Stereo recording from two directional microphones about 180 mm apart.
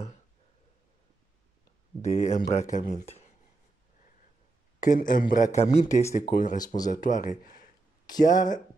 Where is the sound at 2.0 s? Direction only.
40° left (ahead or behind).